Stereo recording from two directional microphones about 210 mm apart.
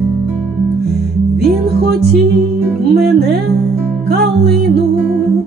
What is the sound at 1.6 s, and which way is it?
Music, 50° right (ahead or behind).